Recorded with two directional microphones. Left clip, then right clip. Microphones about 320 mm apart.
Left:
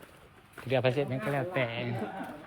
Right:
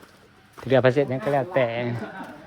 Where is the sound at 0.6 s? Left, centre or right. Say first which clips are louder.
Right 9 dB; centre.